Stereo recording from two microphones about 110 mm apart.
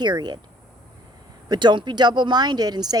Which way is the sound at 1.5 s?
45° right (ahead or behind).